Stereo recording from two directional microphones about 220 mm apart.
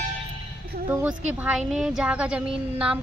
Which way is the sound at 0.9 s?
5° right (ahead or behind).